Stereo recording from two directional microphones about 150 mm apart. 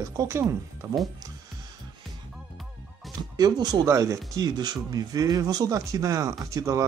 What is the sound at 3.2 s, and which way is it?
Speech, 25° right (ahead or behind).